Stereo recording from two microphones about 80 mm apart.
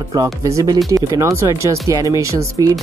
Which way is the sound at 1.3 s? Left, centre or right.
Right.